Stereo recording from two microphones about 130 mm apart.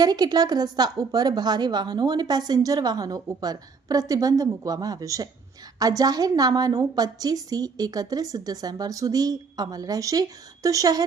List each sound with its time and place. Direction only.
0.0 s a woman's voice: 30° right (ahead or behind)